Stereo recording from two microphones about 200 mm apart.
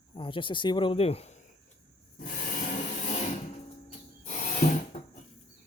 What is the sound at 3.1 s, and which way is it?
Music, 35° left (ahead or behind).